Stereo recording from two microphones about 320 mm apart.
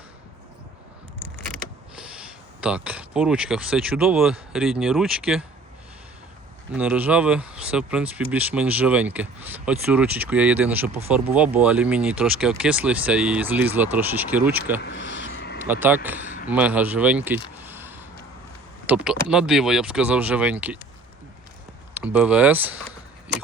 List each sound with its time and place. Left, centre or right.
2.0 s speech: centre
6.7 s speech: centre
14.8 s speech: left
15.3 s vehicle: left
15.6 s speech: centre
21.9 s speech: centre